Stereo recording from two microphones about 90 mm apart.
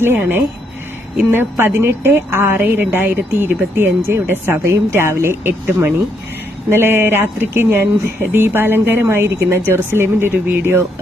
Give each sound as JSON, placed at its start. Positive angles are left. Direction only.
{"t": 0.0, "sound": "a woman's voice", "side_deg": -25}